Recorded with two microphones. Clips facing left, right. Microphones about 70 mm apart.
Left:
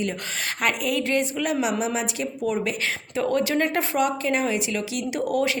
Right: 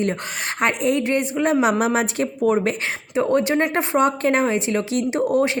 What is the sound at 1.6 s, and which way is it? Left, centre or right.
A woman's voice, right.